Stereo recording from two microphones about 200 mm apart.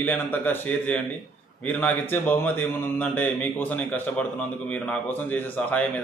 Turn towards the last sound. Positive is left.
turn(degrees=10)  # may be behind; listen again after turning